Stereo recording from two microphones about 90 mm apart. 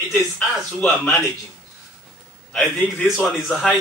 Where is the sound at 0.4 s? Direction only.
15° left (ahead or behind).